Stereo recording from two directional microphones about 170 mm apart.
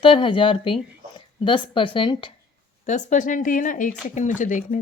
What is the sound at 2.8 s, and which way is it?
A woman's voice, 45° left (ahead or behind).